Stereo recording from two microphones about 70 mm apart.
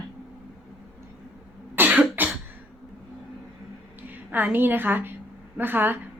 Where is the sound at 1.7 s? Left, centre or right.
Right.